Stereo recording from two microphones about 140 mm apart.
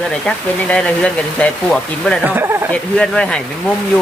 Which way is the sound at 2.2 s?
15° right (ahead or behind).